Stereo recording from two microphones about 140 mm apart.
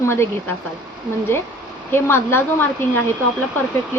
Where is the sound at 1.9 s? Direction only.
15° left (ahead or behind).